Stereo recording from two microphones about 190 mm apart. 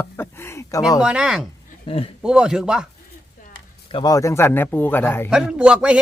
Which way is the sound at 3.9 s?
20° left (ahead or behind).